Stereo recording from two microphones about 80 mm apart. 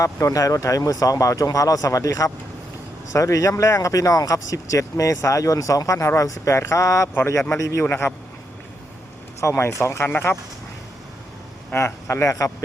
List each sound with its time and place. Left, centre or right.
0.0 s speech: left
9.4 s speech: left
11.7 s speech: left